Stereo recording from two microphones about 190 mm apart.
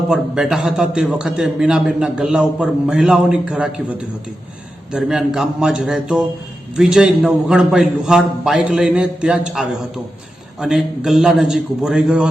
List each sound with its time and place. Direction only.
0.1 s a man's voice: centre (ahead or behind)
4.9 s a man's voice: 5° right (ahead or behind)